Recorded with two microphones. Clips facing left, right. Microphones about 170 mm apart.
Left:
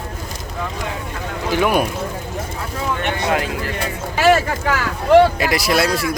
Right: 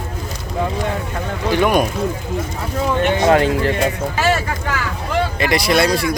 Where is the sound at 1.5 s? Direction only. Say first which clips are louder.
Right 2 dB; 5° left (ahead or behind).